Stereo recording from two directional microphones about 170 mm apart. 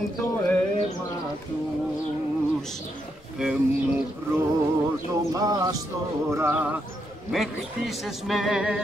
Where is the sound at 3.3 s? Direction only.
5° right (ahead or behind).